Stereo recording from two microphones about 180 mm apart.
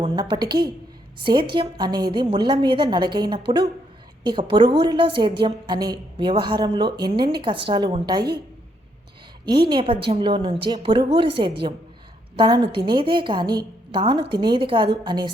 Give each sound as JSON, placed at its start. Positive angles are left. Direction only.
{"t": 0.0, "sound": "a woman's voice", "side_deg": -25}
{"t": 9.6, "sound": "a woman's voice", "side_deg": -30}